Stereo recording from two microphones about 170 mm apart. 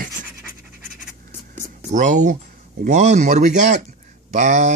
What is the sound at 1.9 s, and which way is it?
Speech, 45° right (ahead or behind).